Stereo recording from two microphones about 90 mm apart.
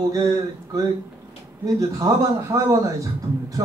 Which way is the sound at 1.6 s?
40° right (ahead or behind).